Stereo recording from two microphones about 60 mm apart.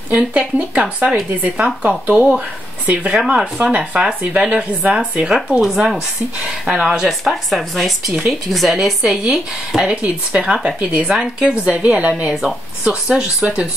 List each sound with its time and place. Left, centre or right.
0.1 s speech: right
5.6 s speech: centre